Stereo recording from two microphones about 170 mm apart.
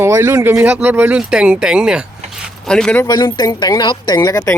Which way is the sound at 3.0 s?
25° left (ahead or behind).